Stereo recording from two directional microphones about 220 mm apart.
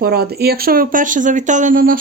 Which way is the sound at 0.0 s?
45° right (ahead or behind).